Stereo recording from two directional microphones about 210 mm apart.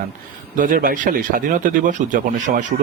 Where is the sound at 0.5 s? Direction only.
40° right (ahead or behind).